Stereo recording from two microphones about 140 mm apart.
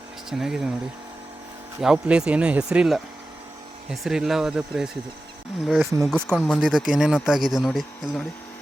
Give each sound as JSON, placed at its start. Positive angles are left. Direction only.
{"t": 0.3, "sound": "speech", "side_deg": -5}
{"t": 1.8, "sound": "speech", "side_deg": -5}